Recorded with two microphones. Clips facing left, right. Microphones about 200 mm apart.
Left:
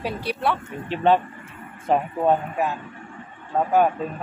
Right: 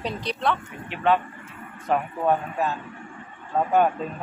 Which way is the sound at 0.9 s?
30° left (ahead or behind).